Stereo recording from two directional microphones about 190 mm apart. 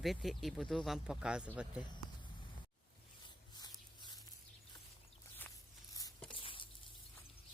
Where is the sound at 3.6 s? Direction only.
20° left (ahead or behind).